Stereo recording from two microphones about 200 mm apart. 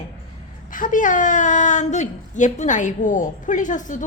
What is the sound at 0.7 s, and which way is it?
A woman's voice, 40° left (ahead or behind).